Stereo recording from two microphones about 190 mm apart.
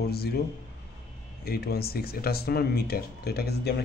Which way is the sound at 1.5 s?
55° left (ahead or behind).